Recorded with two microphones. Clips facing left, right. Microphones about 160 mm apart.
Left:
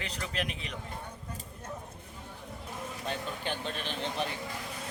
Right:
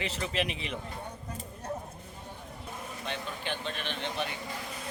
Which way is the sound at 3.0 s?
40° left (ahead or behind).